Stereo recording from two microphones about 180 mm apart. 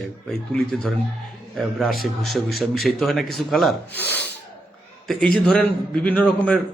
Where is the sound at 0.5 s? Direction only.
5° left (ahead or behind).